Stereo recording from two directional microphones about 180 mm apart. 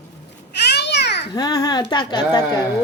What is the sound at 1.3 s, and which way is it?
Speech, 20° left (ahead or behind).